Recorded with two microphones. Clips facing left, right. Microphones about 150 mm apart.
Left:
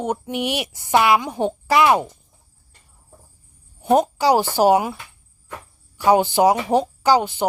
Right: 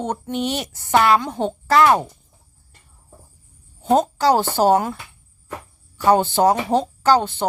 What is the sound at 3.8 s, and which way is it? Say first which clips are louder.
A woman's voice: even; 10° left (ahead or behind).